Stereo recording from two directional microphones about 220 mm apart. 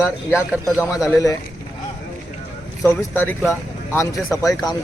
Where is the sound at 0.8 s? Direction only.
Centre (ahead or behind).